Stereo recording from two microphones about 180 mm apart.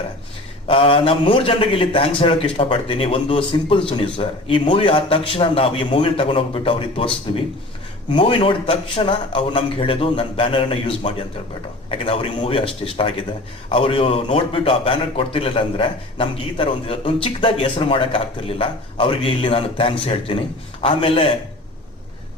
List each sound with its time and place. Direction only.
0.7 s a man's voice: 30° left (ahead or behind)
8.1 s a man's voice: 30° left (ahead or behind)